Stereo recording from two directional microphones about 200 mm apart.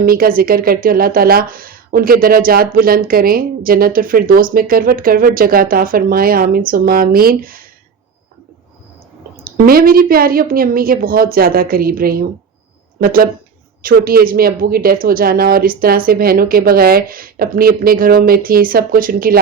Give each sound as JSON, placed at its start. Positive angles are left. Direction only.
{"t": 0.0, "sound": "speech", "side_deg": -45}
{"t": 9.4, "sound": "speech", "side_deg": -50}